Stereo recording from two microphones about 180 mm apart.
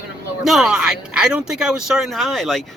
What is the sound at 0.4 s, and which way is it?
Speech, centre (ahead or behind).